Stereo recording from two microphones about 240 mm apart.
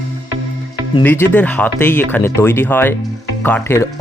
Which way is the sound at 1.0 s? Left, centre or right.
Centre.